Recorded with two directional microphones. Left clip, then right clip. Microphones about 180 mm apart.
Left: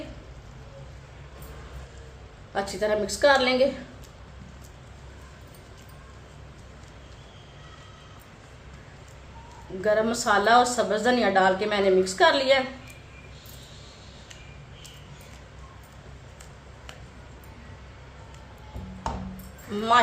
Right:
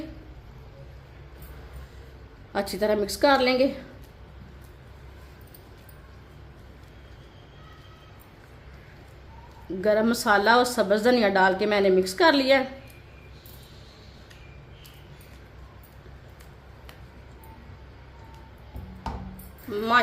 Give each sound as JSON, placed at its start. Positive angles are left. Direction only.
{"t": 2.5, "sound": "a woman's voice", "side_deg": -55}
{"t": 9.8, "sound": "a woman's voice", "side_deg": -55}